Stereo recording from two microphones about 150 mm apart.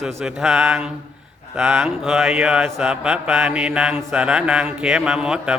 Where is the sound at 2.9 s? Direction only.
5° right (ahead or behind).